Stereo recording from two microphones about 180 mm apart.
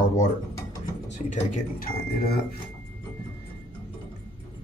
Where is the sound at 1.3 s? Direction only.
50° left (ahead or behind).